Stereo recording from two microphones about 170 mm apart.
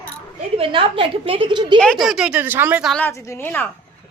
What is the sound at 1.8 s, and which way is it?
Speech, centre (ahead or behind).